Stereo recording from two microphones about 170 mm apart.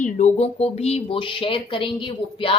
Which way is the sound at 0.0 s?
45° left (ahead or behind).